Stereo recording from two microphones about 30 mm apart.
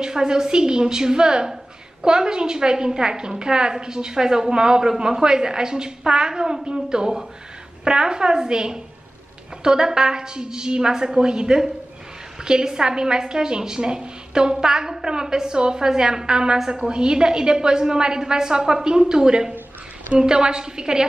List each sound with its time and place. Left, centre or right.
0.0 s a woman's voice: right